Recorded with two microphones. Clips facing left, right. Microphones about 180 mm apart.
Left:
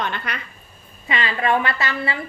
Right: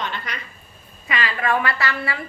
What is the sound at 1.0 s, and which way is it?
A woman's voice, 25° left (ahead or behind).